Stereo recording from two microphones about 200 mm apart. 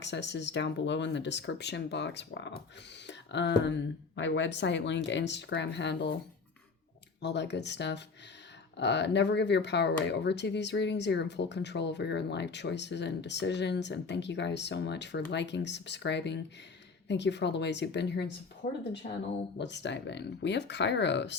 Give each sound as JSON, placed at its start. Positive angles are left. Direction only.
{"t": 0.0, "sound": "speech", "side_deg": 60}
{"t": 7.2, "sound": "speech", "side_deg": 60}
{"t": 18.6, "sound": "speech", "side_deg": 45}
{"t": 19.5, "sound": "speech", "side_deg": 60}